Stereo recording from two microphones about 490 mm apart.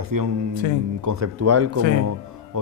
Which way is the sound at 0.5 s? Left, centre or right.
Left.